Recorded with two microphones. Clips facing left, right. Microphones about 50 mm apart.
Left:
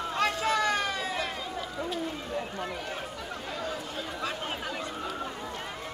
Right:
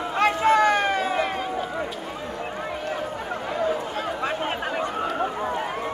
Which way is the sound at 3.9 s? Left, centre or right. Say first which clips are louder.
Right 8 dB; right.